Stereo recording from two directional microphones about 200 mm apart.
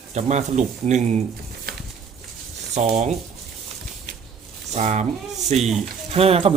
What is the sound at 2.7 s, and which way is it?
Speech, 35° right (ahead or behind).